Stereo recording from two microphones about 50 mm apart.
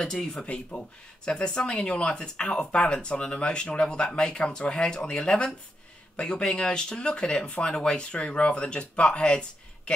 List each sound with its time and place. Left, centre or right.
0.0 s speech: centre
0.5 s speech: left